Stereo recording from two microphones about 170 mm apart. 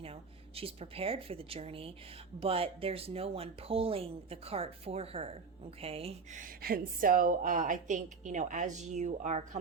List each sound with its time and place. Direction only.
0.0 s speech: 35° right (ahead or behind)
6.4 s a woman's voice: 60° right (ahead or behind)